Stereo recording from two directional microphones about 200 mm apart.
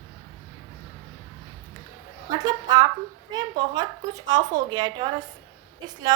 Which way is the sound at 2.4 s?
20° right (ahead or behind).